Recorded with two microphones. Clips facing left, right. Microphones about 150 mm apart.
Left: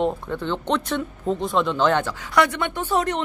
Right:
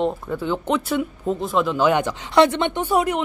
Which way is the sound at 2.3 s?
25° right (ahead or behind).